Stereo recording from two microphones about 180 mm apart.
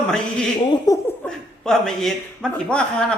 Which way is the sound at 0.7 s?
15° left (ahead or behind).